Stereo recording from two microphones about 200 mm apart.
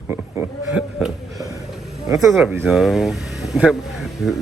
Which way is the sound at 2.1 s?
15° right (ahead or behind).